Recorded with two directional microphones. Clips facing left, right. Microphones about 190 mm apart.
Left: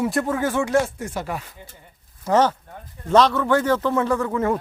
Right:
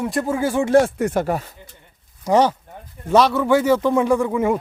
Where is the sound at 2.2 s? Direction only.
15° right (ahead or behind).